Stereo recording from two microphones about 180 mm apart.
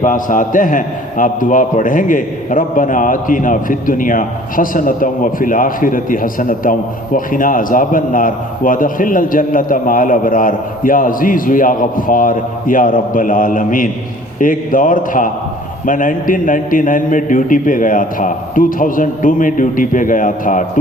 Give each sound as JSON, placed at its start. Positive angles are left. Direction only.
{"t": 0.0, "sound": "a man's voice", "side_deg": 45}